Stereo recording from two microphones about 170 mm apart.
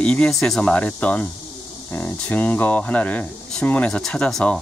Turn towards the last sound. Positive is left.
turn(degrees=5)  # may be behind; listen again after turning